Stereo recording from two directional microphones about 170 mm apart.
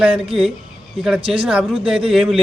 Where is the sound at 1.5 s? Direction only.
5° right (ahead or behind).